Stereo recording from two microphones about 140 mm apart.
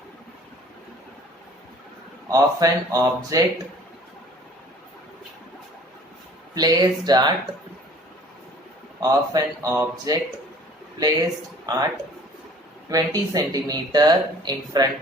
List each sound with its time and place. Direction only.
2.3 s speech: 25° right (ahead or behind)
6.5 s speech: 30° right (ahead or behind)
9.0 s speech: 25° right (ahead or behind)
12.9 s speech: 25° right (ahead or behind)